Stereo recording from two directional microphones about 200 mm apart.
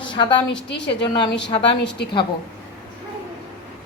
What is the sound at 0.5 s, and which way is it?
Speech, 60° left (ahead or behind).